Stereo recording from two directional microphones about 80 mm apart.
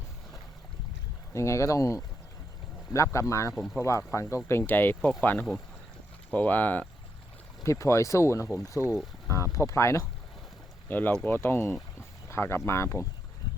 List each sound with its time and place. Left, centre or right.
1.3 s speech: left
7.6 s speech: left
8.8 s speech: right
9.2 s speech: left
10.8 s speech: left